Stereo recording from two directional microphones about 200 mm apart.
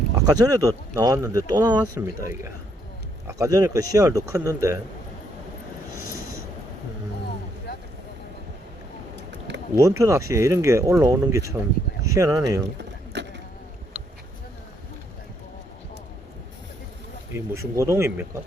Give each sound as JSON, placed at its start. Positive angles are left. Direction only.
{"t": 0.2, "sound": "speech", "side_deg": -20}
{"t": 9.7, "sound": "speech", "side_deg": -15}
{"t": 13.1, "sound": "vehicle", "side_deg": -60}
{"t": 17.3, "sound": "speech", "side_deg": -15}